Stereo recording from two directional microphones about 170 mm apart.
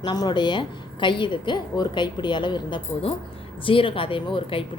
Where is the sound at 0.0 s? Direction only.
25° left (ahead or behind).